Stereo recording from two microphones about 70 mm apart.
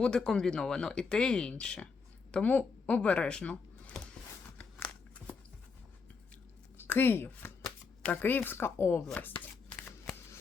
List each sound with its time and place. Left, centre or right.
0.0 s speech: centre
6.7 s speech: left